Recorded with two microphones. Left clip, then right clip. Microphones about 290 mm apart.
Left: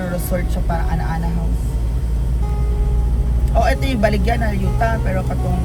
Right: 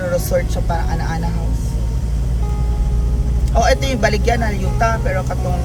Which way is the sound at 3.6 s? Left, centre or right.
Centre.